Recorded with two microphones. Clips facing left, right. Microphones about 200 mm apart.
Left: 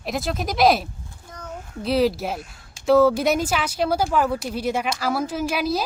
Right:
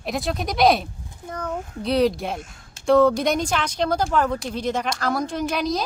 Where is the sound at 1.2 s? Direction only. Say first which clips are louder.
Right 9 dB; 60° right (ahead or behind).